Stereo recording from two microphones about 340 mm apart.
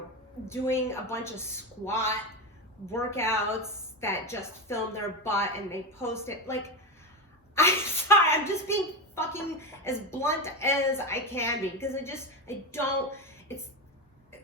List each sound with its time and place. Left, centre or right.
0.4 s a woman's voice: centre